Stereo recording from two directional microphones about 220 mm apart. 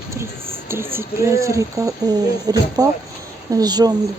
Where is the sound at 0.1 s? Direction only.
10° right (ahead or behind).